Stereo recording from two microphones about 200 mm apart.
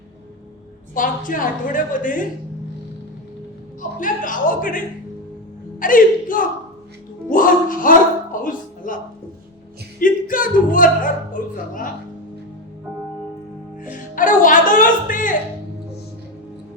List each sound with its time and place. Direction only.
0.9 s a woman's voice: 40° left (ahead or behind)
3.8 s a woman's voice: 40° left (ahead or behind)
5.8 s speech: 45° left (ahead or behind)
10.0 s speech: 45° left (ahead or behind)
14.2 s a woman's voice: 40° left (ahead or behind)